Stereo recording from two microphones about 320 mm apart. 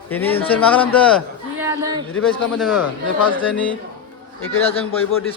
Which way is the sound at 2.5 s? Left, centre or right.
Centre.